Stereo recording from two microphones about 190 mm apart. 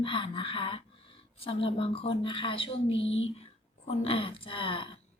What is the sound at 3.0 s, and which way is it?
Speech, 90° left.